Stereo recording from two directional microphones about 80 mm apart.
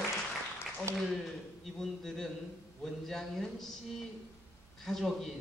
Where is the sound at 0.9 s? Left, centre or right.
Right.